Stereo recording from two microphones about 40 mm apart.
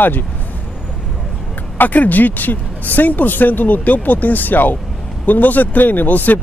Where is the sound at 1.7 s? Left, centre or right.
Left.